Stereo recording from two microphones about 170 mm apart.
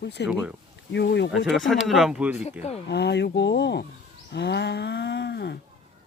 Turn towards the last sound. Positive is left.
turn(degrees=80)